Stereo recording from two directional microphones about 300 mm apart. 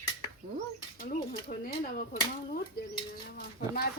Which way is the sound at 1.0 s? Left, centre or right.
Left.